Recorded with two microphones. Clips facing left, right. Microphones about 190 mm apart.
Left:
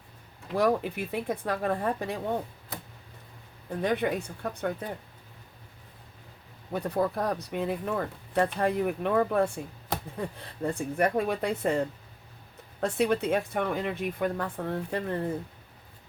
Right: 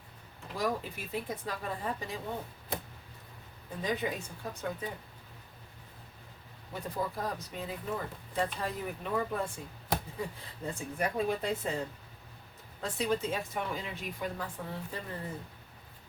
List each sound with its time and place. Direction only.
0.5 s speech: 60° left (ahead or behind)
3.7 s speech: 65° left (ahead or behind)
6.7 s speech: 65° left (ahead or behind)
12.8 s speech: 65° left (ahead or behind)